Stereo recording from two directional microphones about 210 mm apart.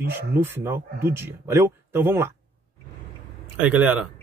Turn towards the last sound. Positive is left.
turn(degrees=-5)  # may be behind; listen again after turning